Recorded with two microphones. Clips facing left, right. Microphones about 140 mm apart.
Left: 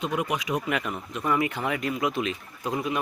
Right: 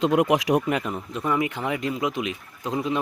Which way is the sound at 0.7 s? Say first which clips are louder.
Right 3 dB; 30° right (ahead or behind).